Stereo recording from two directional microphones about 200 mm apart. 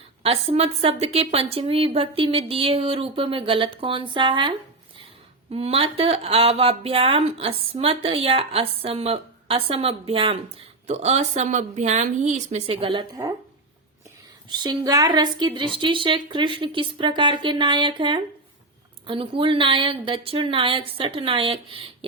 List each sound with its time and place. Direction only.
0.2 s a woman's voice: 30° right (ahead or behind)
14.5 s speech: 20° right (ahead or behind)